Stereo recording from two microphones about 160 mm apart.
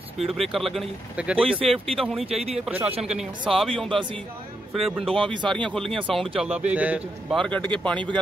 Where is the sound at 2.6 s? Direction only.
10° right (ahead or behind).